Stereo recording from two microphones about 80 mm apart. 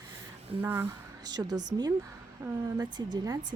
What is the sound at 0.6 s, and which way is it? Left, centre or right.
Speech, right.